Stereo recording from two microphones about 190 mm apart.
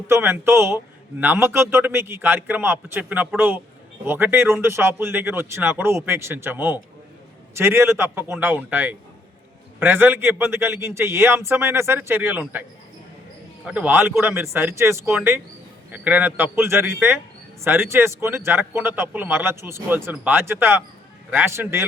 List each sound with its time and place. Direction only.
0.1 s a man's voice: 10° right (ahead or behind)
13.7 s a man's voice: 10° right (ahead or behind)